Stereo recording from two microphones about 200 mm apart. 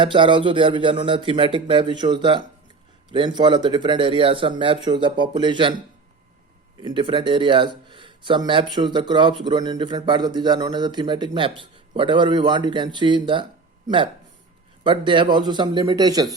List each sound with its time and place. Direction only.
0.0 s a man's voice: 25° right (ahead or behind)
6.8 s a man's voice: 25° right (ahead or behind)